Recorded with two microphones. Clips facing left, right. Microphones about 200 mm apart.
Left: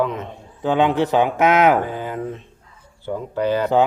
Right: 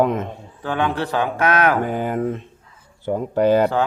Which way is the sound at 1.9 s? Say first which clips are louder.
Right 5 dB; 50° right (ahead or behind).